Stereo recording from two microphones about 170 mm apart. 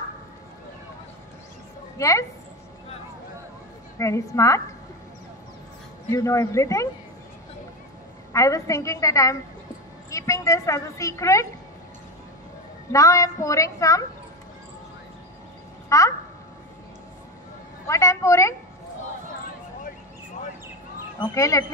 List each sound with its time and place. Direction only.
2.0 s speech: 20° left (ahead or behind)
4.0 s speech: 20° left (ahead or behind)
6.1 s speech: 20° left (ahead or behind)
8.3 s a woman's voice: 20° left (ahead or behind)
12.9 s a woman's voice: 20° left (ahead or behind)
15.9 s a sound: 20° left (ahead or behind)
17.8 s a sound: 15° left (ahead or behind)
21.2 s a woman's voice: 20° left (ahead or behind)